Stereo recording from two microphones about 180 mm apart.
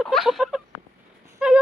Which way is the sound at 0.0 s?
Centre (ahead or behind).